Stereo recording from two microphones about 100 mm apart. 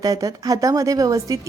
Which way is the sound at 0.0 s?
35° right (ahead or behind).